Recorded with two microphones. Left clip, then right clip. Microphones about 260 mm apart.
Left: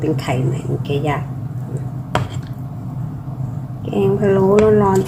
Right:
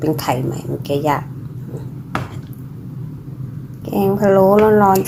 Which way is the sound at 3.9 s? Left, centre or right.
Centre.